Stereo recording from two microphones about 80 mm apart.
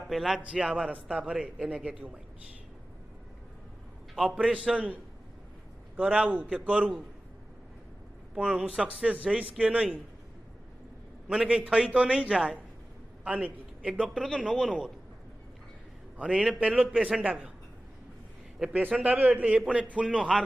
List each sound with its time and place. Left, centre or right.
0.1 s a man's voice: centre
0.4 s a man's voice: centre
4.1 s a man's voice: centre
8.4 s a man's voice: centre
11.2 s a man's voice: centre
14.1 s speech: centre
14.6 s a man's voice: centre
16.2 s a man's voice: centre
18.7 s a man's voice: centre
20.3 s a man's voice: centre